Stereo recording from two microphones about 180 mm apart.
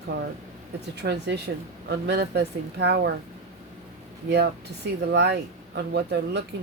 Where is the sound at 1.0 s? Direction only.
70° right (ahead or behind).